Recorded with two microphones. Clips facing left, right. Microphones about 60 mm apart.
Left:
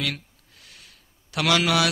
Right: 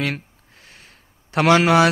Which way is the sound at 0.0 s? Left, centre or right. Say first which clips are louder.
Right 5 dB; right.